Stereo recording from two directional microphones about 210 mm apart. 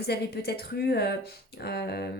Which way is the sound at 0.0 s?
50° left (ahead or behind).